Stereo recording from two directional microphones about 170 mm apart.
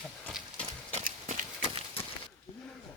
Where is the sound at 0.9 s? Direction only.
45° right (ahead or behind).